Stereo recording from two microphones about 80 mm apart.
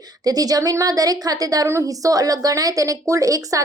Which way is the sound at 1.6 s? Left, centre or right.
Right.